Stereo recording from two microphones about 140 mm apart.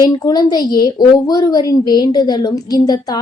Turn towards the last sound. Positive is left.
turn(degrees=30)  # may be behind; listen again after turning